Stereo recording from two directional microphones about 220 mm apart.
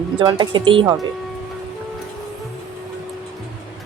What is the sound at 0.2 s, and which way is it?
Speech, 20° right (ahead or behind).